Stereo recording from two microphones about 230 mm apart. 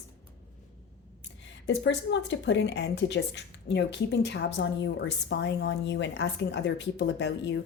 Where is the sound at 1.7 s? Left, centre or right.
Left.